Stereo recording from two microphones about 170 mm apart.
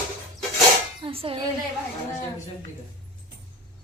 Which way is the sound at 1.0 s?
30° right (ahead or behind).